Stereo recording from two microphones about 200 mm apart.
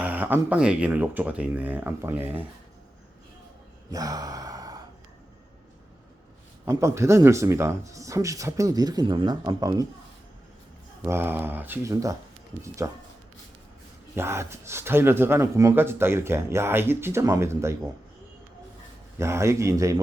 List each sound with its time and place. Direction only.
0.0 s speech: 10° right (ahead or behind)
3.9 s gasp: 20° right (ahead or behind)
6.7 s speech: 15° right (ahead or behind)
11.0 s speech: 10° right (ahead or behind)
14.2 s speech: 15° right (ahead or behind)
19.2 s speech: 15° right (ahead or behind)